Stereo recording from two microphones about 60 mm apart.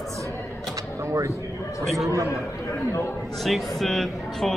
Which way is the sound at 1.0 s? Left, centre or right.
Right.